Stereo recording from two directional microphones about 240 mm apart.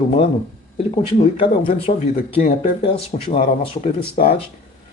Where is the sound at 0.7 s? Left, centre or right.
Left.